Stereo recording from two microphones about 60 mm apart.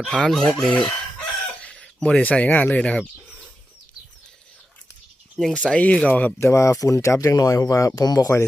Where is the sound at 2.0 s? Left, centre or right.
Left.